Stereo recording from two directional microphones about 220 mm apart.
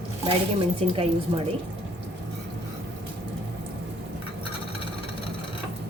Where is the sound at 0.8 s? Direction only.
25° right (ahead or behind).